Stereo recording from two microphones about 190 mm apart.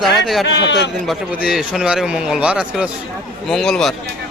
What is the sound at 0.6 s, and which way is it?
Speech, 65° left (ahead or behind).